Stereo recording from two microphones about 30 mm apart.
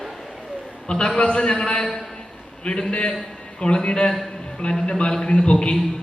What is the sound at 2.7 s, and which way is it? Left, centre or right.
Speech, left.